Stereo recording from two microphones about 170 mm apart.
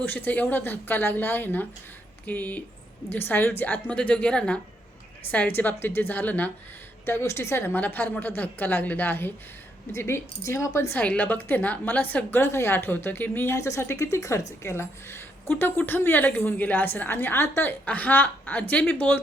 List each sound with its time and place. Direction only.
0.0 s a woman's voice: 10° left (ahead or behind)